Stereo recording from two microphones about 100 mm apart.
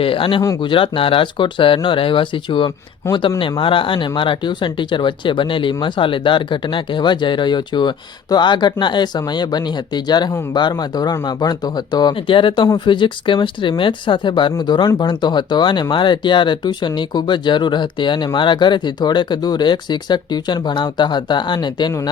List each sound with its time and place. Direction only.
0.0 s speech: 65° left (ahead or behind); by 22.1 s 50° left (ahead or behind)